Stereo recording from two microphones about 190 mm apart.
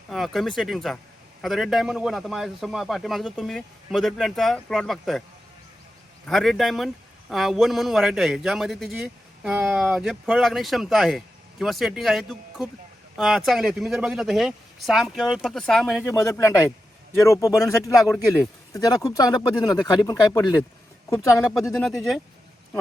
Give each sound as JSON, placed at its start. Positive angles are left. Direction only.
{"t": 0.1, "sound": "a man's voice", "side_deg": 0}
{"t": 6.2, "sound": "a man's voice", "side_deg": 0}
{"t": 16.2, "sound": "speech", "side_deg": 15}
{"t": 21.8, "sound": "a man's voice", "side_deg": 0}